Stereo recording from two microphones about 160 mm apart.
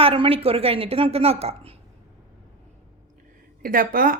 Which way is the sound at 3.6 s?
60° right (ahead or behind).